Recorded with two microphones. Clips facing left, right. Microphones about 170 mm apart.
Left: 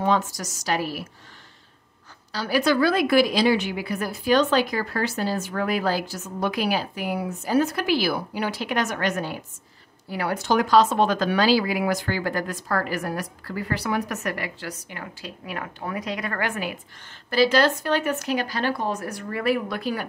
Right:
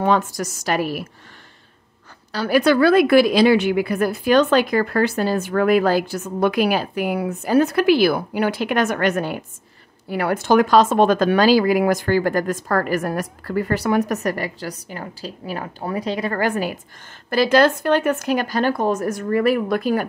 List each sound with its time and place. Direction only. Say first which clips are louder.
0.0 s a woman's voice: right 4 dB; 55° right (ahead or behind)
2.3 s a woman's voice: right 5 dB; 55° right (ahead or behind); by 16.7 s 35° right (ahead or behind)
17.3 s speech: right 4 dB; 50° right (ahead or behind)